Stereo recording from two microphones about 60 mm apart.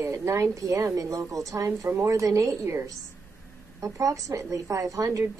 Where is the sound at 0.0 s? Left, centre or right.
Right.